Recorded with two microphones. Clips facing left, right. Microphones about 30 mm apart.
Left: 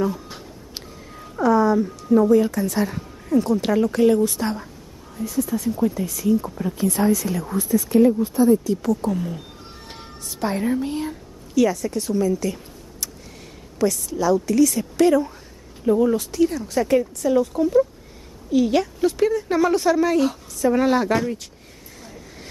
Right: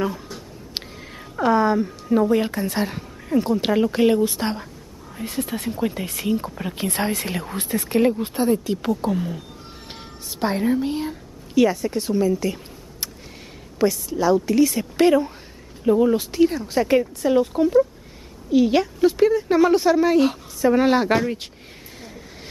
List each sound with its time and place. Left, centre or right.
0.8 s a sound: right
1.9 s speech: right
5.1 s speech: right
9.1 s a woman's voice: centre
11.5 s speech: right
12.3 s a woman's voice: centre
13.7 s speech: right
15.8 s a woman's voice: centre